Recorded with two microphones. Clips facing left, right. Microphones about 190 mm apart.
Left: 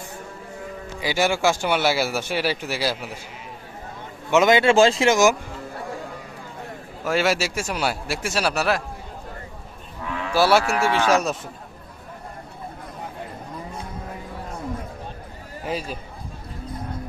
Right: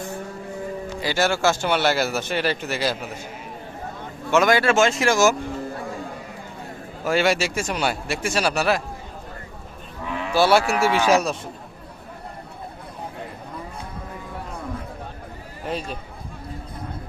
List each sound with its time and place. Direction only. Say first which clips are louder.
1.0 s speech: even; 15° left (ahead or behind)
4.3 s speech: left 2 dB; 20° left (ahead or behind)
7.0 s speech: right 1 dB; centre (ahead or behind)
10.3 s speech: right 1 dB; 5° left (ahead or behind)
10.7 s speech: right 1 dB; 5° right (ahead or behind)
15.6 s speech: even; centre (ahead or behind)